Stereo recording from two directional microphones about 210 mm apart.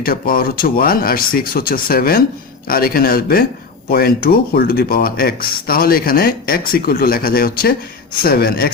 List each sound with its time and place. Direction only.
0.0 s speech: 45° left (ahead or behind)